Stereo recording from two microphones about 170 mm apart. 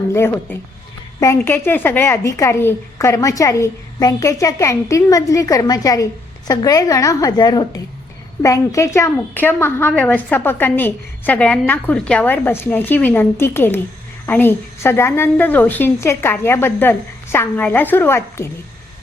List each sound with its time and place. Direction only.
0.5 s a woman's voice: 10° left (ahead or behind)